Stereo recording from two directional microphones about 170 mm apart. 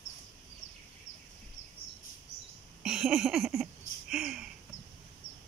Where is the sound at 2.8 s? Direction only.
5° right (ahead or behind).